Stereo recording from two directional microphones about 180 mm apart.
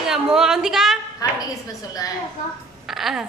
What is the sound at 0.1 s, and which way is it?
Speech, 5° right (ahead or behind).